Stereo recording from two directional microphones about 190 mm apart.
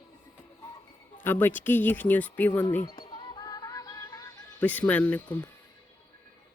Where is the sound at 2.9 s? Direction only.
25° left (ahead or behind).